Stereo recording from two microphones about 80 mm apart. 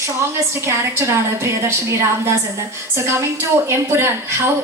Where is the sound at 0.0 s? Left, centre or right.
Right.